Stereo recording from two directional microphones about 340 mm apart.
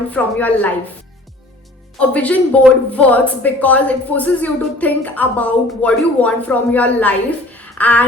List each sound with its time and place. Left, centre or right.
0.1 s a woman's voice: centre
2.0 s a woman's voice: centre